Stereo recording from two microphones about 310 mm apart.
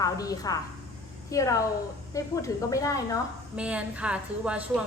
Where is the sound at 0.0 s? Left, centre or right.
Centre.